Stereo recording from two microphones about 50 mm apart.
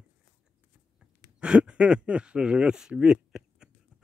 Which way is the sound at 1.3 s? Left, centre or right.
Right.